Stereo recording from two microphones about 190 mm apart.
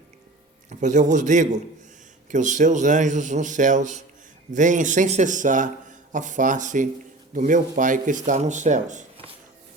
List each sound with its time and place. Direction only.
0.7 s speech: 40° right (ahead or behind)